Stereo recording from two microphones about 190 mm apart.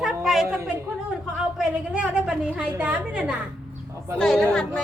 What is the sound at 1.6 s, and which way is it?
A woman's voice, 5° right (ahead or behind).